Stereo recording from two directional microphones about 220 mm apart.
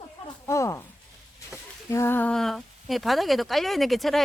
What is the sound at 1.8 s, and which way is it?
A woman's voice, 10° left (ahead or behind).